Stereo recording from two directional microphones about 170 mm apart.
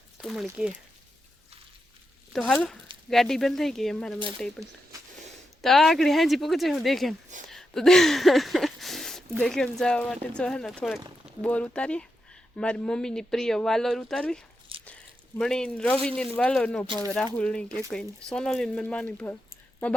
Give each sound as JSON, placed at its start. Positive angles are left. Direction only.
{"t": 0.2, "sound": "speech", "side_deg": 0}
{"t": 2.3, "sound": "speech", "side_deg": 5}
{"t": 5.6, "sound": "speech", "side_deg": 0}
{"t": 7.4, "sound": "a sound", "side_deg": 0}
{"t": 9.4, "sound": "speech", "side_deg": 5}
{"t": 14.7, "sound": "a sound", "side_deg": -30}
{"t": 15.4, "sound": "speech", "side_deg": 5}